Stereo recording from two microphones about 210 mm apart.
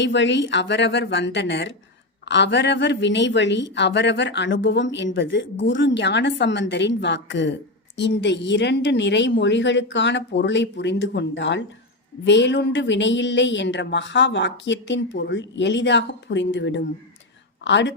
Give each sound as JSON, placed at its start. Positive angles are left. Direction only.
{"t": 0.0, "sound": "a woman's voice", "side_deg": 60}